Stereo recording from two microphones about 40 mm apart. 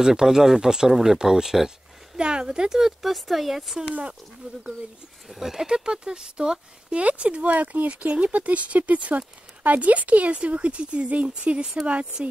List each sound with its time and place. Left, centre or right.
0.0 s speech: centre
2.1 s speech: right; by 3.7 s centre
4.4 s speech: right
5.3 s speech: centre; by 12.2 s right